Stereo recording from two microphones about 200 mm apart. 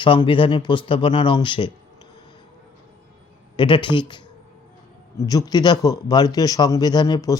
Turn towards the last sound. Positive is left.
turn(degrees=20)  # may be behind; listen again after turning